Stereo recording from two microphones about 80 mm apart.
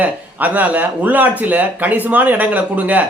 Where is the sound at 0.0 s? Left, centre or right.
Right.